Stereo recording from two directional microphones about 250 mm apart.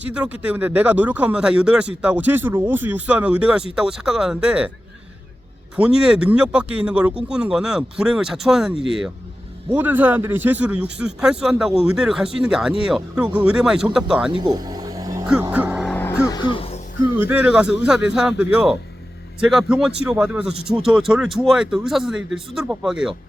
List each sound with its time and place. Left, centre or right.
0.1 s speech: centre
5.7 s speech: centre
14.3 s vehicle: centre
16.2 s music: centre
17.2 s speech: centre